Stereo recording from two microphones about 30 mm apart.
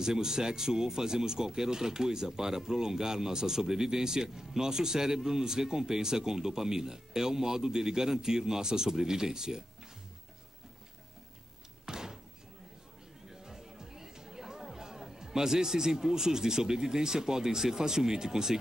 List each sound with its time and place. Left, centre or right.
0.0 s speech: centre
11.8 s door: centre
13.3 s speech: centre